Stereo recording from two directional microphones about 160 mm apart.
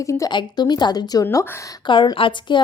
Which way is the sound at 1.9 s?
30° left (ahead or behind).